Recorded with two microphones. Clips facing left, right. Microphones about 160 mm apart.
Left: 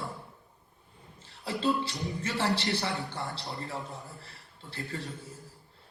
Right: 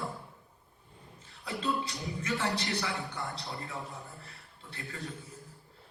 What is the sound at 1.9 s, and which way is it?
Music, 35° left (ahead or behind).